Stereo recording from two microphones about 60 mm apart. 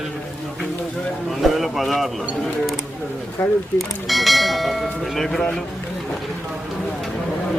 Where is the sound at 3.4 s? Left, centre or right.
Left.